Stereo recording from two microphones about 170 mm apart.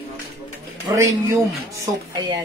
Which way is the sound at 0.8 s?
15° right (ahead or behind).